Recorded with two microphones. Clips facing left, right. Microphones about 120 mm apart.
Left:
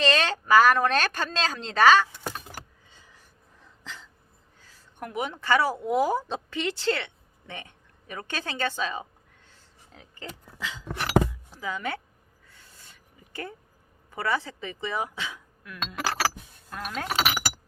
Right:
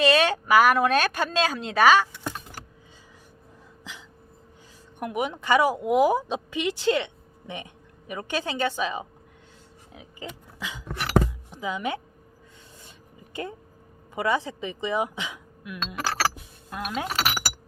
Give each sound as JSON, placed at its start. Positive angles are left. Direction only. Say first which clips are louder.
{"t": 0.0, "sound": "speech", "louder": "right 4 dB", "side_deg": -10}
{"t": 4.9, "sound": "a woman's voice", "louder": "right 3 dB", "side_deg": -15}
{"t": 9.9, "sound": "a sound", "louder": "right 3 dB", "side_deg": -10}
{"t": 11.5, "sound": "speech", "louder": "right 4 dB", "side_deg": -15}
{"t": 12.8, "sound": "a sound", "louder": "right 6 dB", "side_deg": -20}
{"t": 14.1, "sound": "speech", "louder": "right 3 dB", "side_deg": -15}